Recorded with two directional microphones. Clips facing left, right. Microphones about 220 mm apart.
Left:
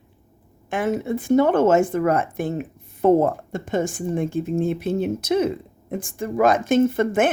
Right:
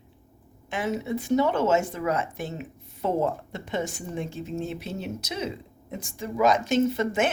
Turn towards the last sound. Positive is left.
turn(degrees=50)  # may be behind; listen again after turning